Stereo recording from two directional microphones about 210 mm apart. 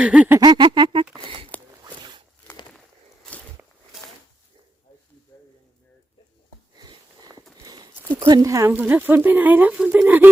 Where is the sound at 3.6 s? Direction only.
10° right (ahead or behind).